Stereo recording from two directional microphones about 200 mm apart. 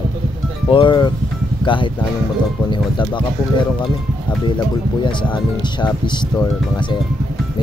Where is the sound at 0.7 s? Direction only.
25° left (ahead or behind).